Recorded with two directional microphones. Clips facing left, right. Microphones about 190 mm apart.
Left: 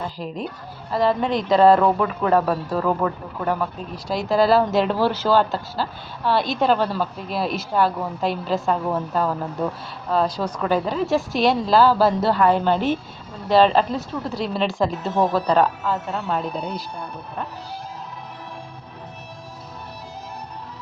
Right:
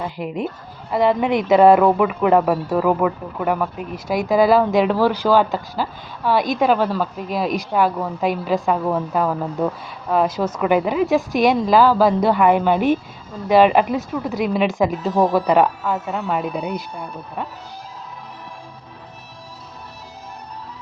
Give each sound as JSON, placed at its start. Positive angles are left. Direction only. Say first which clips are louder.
{"t": 0.2, "sound": "a woman's voice", "louder": "right 4 dB", "side_deg": -15}
{"t": 4.7, "sound": "a woman's voice", "louder": "right 3 dB", "side_deg": -5}